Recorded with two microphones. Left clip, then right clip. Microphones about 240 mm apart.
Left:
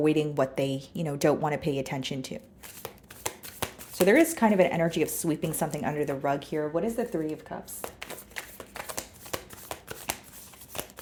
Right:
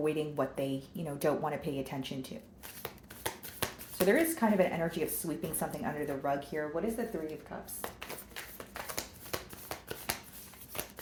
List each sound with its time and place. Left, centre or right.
0.0 s speech: left
2.8 s chopping: left
4.0 s speech: left
8.7 s shuffling cards: left